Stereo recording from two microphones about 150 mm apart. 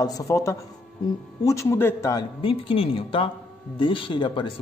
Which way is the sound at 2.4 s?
40° left (ahead or behind).